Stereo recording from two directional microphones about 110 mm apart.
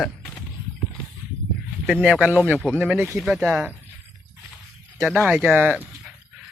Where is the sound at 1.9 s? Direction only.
5° right (ahead or behind).